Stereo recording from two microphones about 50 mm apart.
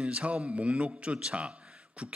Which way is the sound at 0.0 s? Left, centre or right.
Right.